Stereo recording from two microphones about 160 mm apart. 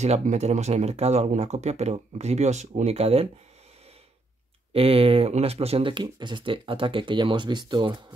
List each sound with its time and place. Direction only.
0.0 s speech: 45° right (ahead or behind)
4.7 s speech: 35° right (ahead or behind)